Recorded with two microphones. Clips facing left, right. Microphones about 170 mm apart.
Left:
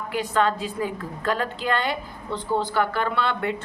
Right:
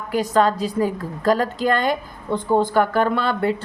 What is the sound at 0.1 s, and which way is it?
A woman's voice, 40° right (ahead or behind).